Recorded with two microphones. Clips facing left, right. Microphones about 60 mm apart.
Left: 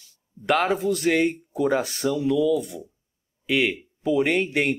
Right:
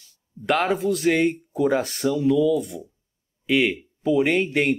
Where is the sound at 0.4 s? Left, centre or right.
Centre.